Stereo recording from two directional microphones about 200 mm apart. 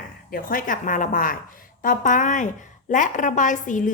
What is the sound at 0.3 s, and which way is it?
A woman's voice, 45° left (ahead or behind).